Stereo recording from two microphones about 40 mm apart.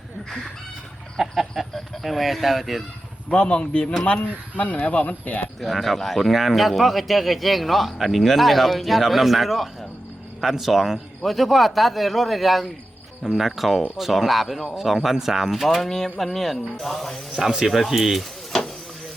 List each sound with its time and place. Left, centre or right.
1.2 s chicken: centre
1.7 s speech: centre
3.2 s a man's voice: left
4.2 s speech: left
5.5 s speech: centre
15.5 s speech: centre